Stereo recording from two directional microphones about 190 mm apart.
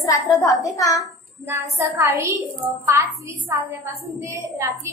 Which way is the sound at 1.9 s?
15° right (ahead or behind).